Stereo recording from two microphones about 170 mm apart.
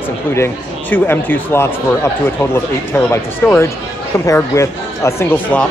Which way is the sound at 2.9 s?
15° left (ahead or behind).